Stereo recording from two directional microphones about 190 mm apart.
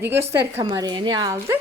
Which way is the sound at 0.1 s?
15° right (ahead or behind).